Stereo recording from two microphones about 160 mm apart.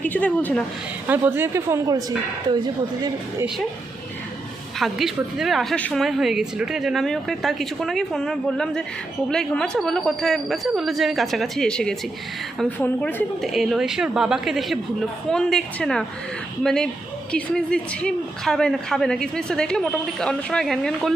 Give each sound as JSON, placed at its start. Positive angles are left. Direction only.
{"t": 0.0, "sound": "a woman's voice", "side_deg": 10}
{"t": 1.0, "sound": "speech", "side_deg": -15}
{"t": 4.8, "sound": "a woman's voice", "side_deg": 0}
{"t": 13.4, "sound": "a woman's voice", "side_deg": 0}